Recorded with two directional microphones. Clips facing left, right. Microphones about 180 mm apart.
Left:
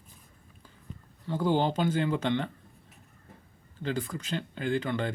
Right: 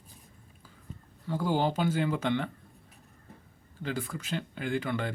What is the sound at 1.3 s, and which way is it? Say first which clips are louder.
Speech: left 2 dB; 10° right (ahead or behind).